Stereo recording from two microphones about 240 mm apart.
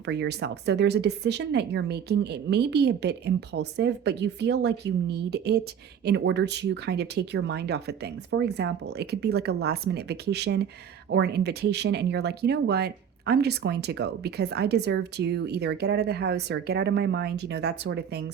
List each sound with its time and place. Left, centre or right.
0.0 s speech: right